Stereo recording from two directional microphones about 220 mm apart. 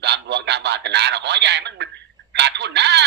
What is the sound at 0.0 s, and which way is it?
Radio, 50° right (ahead or behind).